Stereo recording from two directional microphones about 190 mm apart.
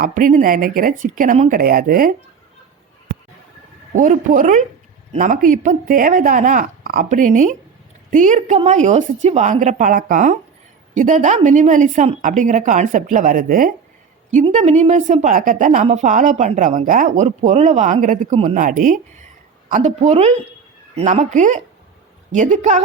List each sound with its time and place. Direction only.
0.0 s speech: 45° right (ahead or behind)
3.9 s a woman's voice: 40° right (ahead or behind)
14.4 s a woman's voice: 35° right (ahead or behind)